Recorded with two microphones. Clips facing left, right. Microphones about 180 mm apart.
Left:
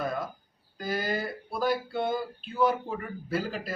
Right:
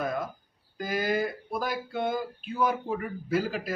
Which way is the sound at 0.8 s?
10° right (ahead or behind).